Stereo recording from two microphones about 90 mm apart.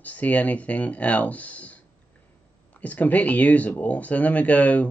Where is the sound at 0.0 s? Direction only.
15° left (ahead or behind).